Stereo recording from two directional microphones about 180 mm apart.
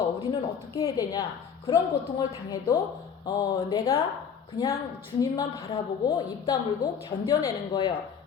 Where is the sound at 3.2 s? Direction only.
20° left (ahead or behind).